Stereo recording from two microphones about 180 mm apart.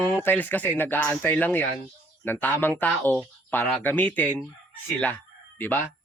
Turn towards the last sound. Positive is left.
turn(degrees=10)  # may be behind; listen again after turning